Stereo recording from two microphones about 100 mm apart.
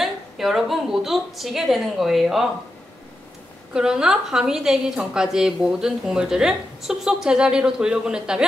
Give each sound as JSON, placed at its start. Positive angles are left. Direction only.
{"t": 0.0, "sound": "a woman's voice", "side_deg": -5}
{"t": 3.7, "sound": "a woman's voice", "side_deg": -5}